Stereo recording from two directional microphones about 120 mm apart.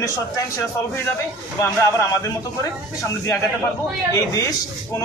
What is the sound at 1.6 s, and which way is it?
Speech, 20° left (ahead or behind).